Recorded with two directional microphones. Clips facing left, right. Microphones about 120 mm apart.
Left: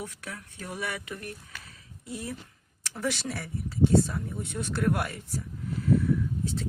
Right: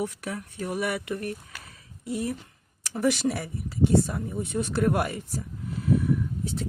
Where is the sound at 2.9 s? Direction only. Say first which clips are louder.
Right 7 dB; 15° right (ahead or behind).